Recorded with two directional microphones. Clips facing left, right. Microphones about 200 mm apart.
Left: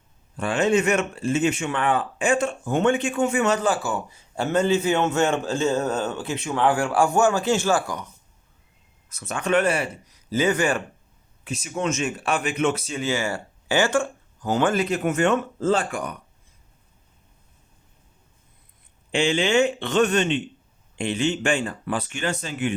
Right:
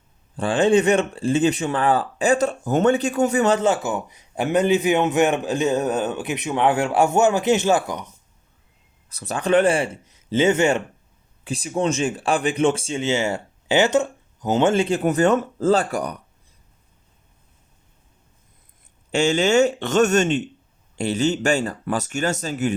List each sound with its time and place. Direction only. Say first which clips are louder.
0.3 s speech: right 4 dB; 30° right (ahead or behind)
9.0 s speech: right 3 dB; 35° right (ahead or behind)
19.1 s speech: right 3 dB; 45° right (ahead or behind)